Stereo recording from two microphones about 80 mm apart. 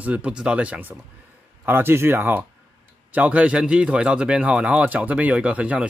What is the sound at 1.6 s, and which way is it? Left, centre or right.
Speech, right.